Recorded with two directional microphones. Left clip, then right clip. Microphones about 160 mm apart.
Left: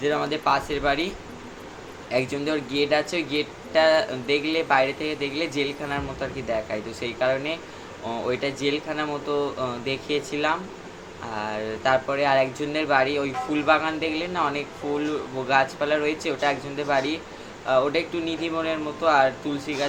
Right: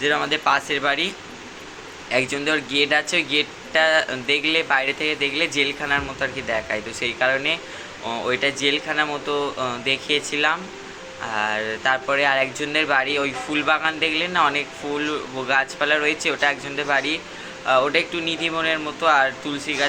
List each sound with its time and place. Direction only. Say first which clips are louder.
0.0 s speech: right 4 dB; 5° left (ahead or behind)